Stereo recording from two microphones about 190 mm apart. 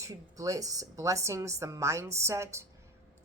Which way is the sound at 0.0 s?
20° right (ahead or behind).